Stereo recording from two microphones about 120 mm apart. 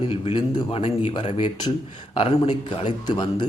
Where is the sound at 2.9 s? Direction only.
40° left (ahead or behind).